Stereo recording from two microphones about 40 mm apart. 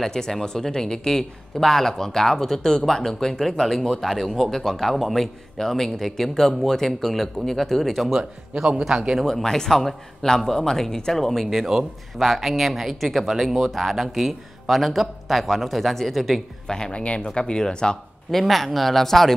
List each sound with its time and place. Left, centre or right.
0.0 s a man's voice: centre
8.8 s speech: centre
9.2 s a man's voice: centre
16.6 s speech: centre
16.9 s speech: left
18.3 s a man's voice: centre